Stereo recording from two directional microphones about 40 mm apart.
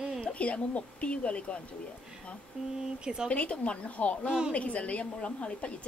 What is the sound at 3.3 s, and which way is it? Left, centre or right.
Speech, left.